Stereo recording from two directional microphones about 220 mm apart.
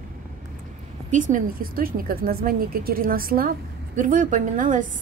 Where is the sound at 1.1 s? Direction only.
35° right (ahead or behind).